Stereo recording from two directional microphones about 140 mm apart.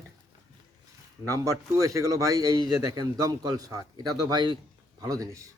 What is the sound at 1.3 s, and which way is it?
A man's voice, 20° right (ahead or behind).